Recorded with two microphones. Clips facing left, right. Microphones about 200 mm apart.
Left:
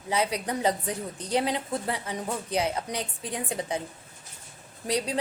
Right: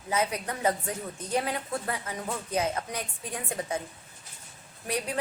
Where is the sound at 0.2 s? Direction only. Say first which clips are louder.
Left 2 dB; 15° left (ahead or behind).